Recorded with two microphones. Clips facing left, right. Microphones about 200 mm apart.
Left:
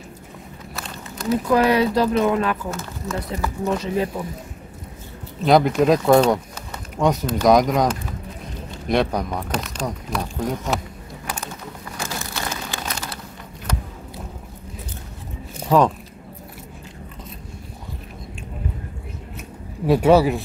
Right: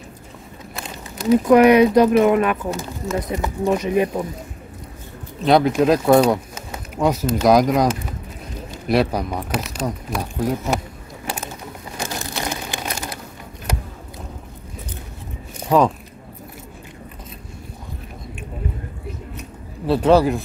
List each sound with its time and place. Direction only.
1.3 s speech: 20° right (ahead or behind)
5.4 s speech: centre (ahead or behind)
11.2 s a sound: 20° right (ahead or behind)
12.0 s crumpling: 15° right (ahead or behind)
15.6 s biting: centre (ahead or behind)
19.9 s speech: 10° left (ahead or behind)